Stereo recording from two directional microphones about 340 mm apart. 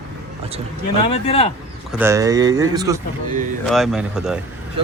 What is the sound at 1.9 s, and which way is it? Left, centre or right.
Speech, centre.